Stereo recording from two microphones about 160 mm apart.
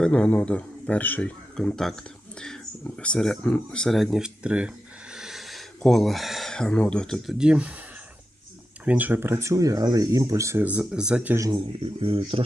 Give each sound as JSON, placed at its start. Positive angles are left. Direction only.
{"t": 0.0, "sound": "speech", "side_deg": 5}
{"t": 8.8, "sound": "speech", "side_deg": -10}
{"t": 11.3, "sound": "speech", "side_deg": -20}
{"t": 11.8, "sound": "speech", "side_deg": -35}